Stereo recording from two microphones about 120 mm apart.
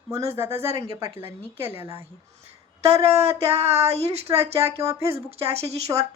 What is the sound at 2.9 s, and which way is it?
Speech, 60° right (ahead or behind).